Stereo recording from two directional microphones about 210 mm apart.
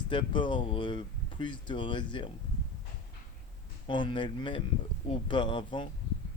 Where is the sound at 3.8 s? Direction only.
25° left (ahead or behind).